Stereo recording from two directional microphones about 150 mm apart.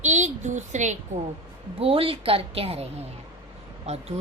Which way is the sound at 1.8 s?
40° right (ahead or behind).